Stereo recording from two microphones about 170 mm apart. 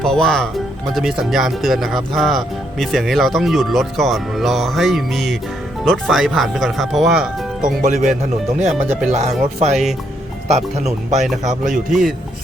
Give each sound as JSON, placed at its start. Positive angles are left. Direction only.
{"t": 0.0, "sound": "speech", "side_deg": 5}
{"t": 7.6, "sound": "speech", "side_deg": -45}
{"t": 9.1, "sound": "speech", "side_deg": -40}
{"t": 11.7, "sound": "speech", "side_deg": 0}